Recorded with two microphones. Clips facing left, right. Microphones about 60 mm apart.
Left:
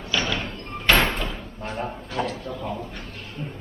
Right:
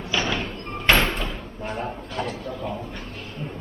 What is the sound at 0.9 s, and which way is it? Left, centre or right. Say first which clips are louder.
Door: left 1 dB; centre.